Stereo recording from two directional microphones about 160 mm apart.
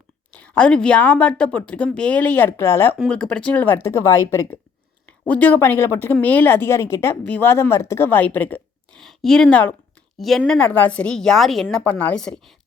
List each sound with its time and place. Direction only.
0.3 s a woman's voice: 10° left (ahead or behind)